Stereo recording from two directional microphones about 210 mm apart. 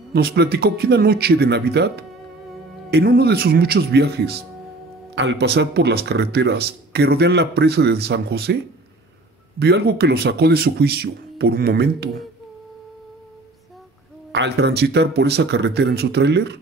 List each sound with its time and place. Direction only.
0.1 s speech: 50° right (ahead or behind)
5.1 s speech: 60° right (ahead or behind)
9.6 s speech: 50° right (ahead or behind)
14.3 s speech: 55° right (ahead or behind)